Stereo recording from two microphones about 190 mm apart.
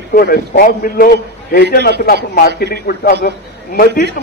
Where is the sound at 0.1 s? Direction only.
55° left (ahead or behind).